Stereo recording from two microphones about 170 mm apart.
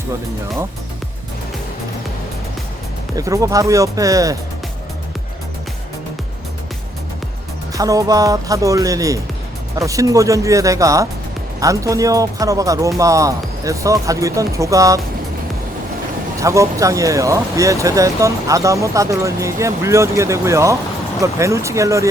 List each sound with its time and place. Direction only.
3.2 s speech: 20° right (ahead or behind)
7.7 s speech: 20° right (ahead or behind)
16.4 s speech: 20° right (ahead or behind)